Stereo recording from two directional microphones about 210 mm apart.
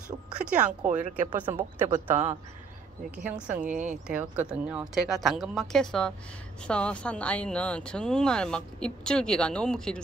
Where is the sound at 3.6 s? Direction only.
35° right (ahead or behind).